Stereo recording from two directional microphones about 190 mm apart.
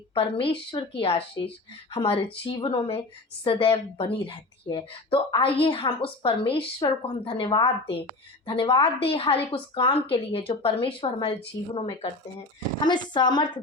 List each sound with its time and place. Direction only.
0.1 s speech: 30° left (ahead or behind)